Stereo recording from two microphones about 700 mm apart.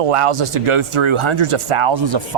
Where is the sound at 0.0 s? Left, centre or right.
Right.